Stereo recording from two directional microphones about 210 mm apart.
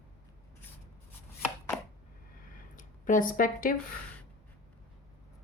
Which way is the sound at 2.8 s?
40° left (ahead or behind).